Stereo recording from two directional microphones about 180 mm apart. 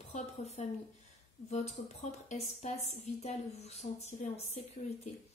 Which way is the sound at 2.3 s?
40° left (ahead or behind).